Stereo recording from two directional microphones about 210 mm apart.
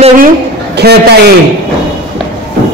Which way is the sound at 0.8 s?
50° right (ahead or behind).